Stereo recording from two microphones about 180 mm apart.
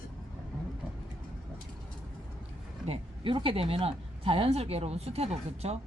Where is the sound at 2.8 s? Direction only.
30° right (ahead or behind).